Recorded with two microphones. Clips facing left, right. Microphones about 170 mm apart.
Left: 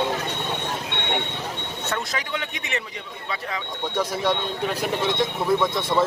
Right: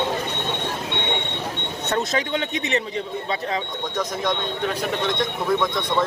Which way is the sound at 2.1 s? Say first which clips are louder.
Right 6 dB; 25° right (ahead or behind).